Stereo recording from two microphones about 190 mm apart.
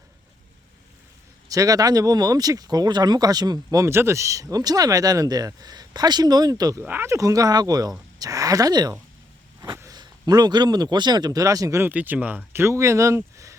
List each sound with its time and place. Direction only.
1.5 s speech: 20° right (ahead or behind)